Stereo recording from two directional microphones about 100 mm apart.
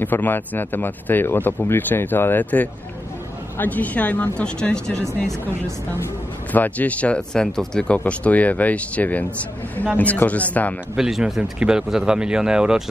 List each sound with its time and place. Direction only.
0.0 s speech: 20° left (ahead or behind)
6.5 s speech: 15° left (ahead or behind)
11.0 s speech: 5° right (ahead or behind)